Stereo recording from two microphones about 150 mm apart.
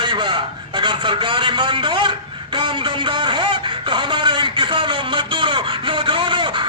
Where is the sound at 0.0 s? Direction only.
30° right (ahead or behind).